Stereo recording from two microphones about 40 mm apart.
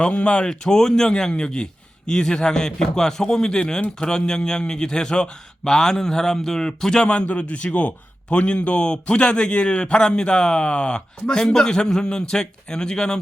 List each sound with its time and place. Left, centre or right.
0.0 s a man's voice: left
11.3 s speech: centre